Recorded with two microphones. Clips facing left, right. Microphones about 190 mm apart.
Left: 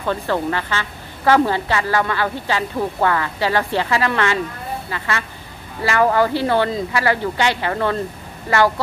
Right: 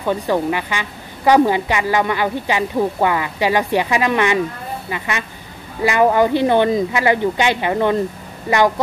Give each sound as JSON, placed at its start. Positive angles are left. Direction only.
{"t": 0.0, "sound": "a woman's voice", "side_deg": -15}